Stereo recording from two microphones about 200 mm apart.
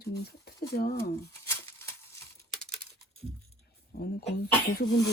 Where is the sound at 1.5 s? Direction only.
10° left (ahead or behind).